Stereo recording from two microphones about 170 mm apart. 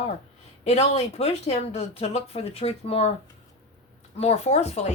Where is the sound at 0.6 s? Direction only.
40° left (ahead or behind).